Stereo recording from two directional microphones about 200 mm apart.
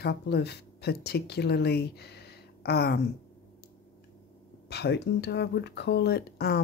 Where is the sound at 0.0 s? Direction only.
55° left (ahead or behind).